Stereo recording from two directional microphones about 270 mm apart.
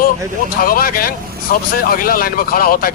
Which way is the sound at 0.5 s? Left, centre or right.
Left.